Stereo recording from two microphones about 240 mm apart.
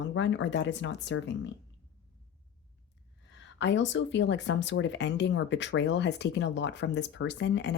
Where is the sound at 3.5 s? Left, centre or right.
Left.